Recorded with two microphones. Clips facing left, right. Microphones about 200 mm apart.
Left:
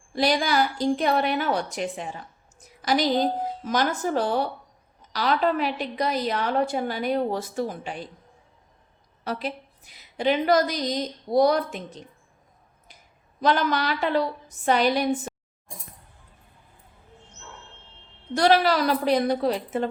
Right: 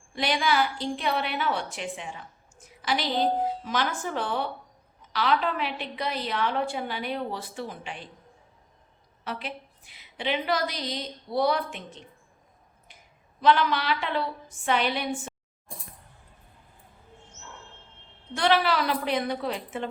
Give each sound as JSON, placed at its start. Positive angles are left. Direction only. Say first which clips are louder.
{"t": 0.1, "sound": "a woman's voice", "louder": "left 3 dB", "side_deg": 35}
{"t": 9.2, "sound": "a woman's voice", "louder": "left 5 dB", "side_deg": 40}
{"t": 13.4, "sound": "a woman's voice", "louder": "even", "side_deg": 40}
{"t": 18.3, "sound": "a woman's voice", "louder": "left 4 dB", "side_deg": 40}